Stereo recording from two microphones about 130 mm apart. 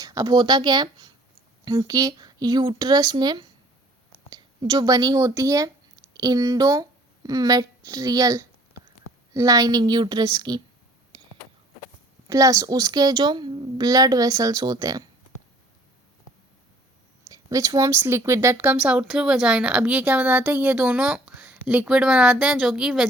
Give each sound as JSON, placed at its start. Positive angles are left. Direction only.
{"t": 0.0, "sound": "speech", "side_deg": -25}
{"t": 12.3, "sound": "a woman's voice", "side_deg": -25}
{"t": 17.3, "sound": "speech", "side_deg": -25}